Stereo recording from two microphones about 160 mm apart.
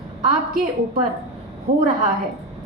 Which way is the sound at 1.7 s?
55° right (ahead or behind).